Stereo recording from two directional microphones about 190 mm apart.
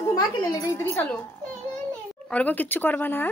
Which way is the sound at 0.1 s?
20° left (ahead or behind).